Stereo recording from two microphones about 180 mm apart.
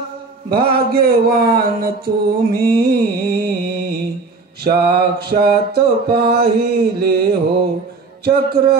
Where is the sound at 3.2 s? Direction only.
60° right (ahead or behind).